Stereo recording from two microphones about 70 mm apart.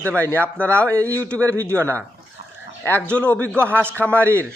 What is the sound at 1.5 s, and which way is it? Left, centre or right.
Speech, right.